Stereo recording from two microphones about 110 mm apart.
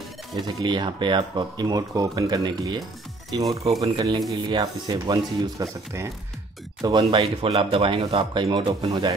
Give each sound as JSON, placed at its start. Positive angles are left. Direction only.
{"t": 0.4, "sound": "speech", "side_deg": -45}
{"t": 3.8, "sound": "speech", "side_deg": -40}
{"t": 6.8, "sound": "speech", "side_deg": -45}
{"t": 7.2, "sound": "speech", "side_deg": -60}